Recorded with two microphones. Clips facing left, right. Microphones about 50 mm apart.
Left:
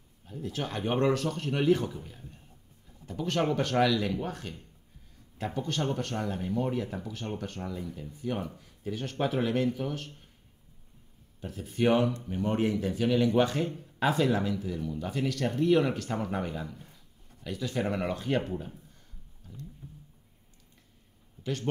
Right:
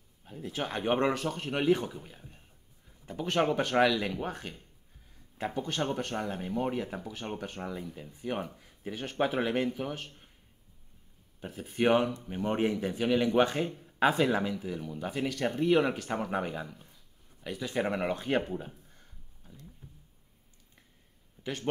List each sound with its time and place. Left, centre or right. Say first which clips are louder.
0.3 s speech: even; right
11.4 s speech: even; right
21.4 s a sound: left 3 dB; right